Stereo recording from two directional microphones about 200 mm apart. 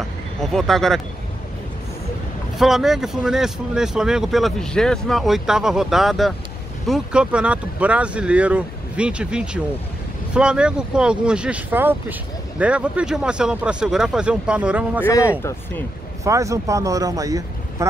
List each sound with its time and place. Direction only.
0.4 s speech: centre (ahead or behind)
2.6 s speech: centre (ahead or behind)
15.0 s speech: 15° left (ahead or behind)
16.3 s speech: 15° right (ahead or behind)